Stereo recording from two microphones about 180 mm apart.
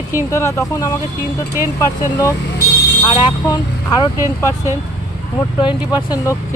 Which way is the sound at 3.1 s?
30° left (ahead or behind).